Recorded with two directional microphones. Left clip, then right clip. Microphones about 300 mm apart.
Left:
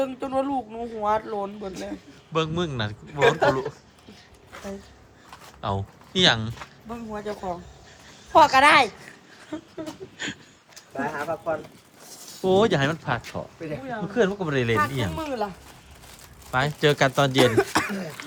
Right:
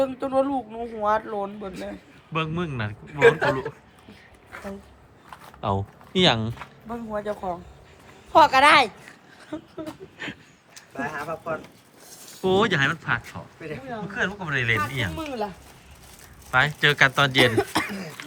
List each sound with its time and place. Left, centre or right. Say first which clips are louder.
0.0 s speech: right 3 dB; centre
5.5 s a woman's voice: right 2 dB; centre
10.8 s speech: left 2 dB; left
12.3 s speech: left 1 dB; centre
13.6 s speech: right 2 dB; left
14.1 s speech: left 3 dB; left
15.1 s speech: left 1 dB; centre
16.5 s speech: right 2 dB; centre